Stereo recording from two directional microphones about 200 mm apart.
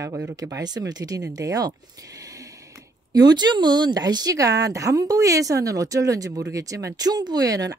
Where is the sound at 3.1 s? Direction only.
20° right (ahead or behind).